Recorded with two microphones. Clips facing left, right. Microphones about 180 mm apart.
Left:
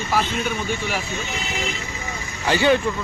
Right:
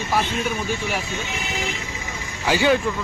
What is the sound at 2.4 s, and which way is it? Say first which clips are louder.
Speech: left 1 dB; 10° right (ahead or behind).